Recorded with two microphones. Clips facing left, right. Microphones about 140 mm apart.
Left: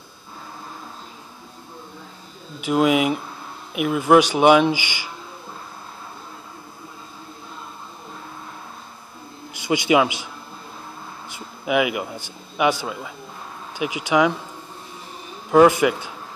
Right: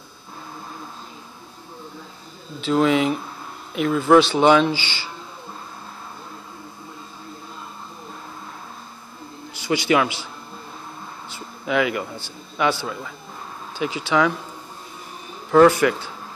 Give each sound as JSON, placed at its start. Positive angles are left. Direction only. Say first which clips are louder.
{"t": 2.6, "sound": "speech", "louder": "even", "side_deg": 15}
{"t": 9.5, "sound": "a man's voice", "louder": "left 1 dB", "side_deg": 20}
{"t": 11.2, "sound": "speech", "louder": "left 2 dB", "side_deg": 15}
{"t": 15.5, "sound": "speech", "louder": "even", "side_deg": 15}